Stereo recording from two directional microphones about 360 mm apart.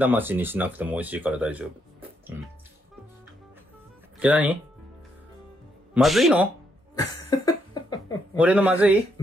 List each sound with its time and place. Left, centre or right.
0.0 s speech: centre
4.2 s speech: centre
5.9 s speech: centre
7.2 s cough: centre
8.4 s speech: centre